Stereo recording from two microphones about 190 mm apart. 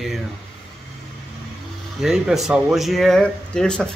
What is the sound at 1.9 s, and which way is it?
Speech, 5° right (ahead or behind).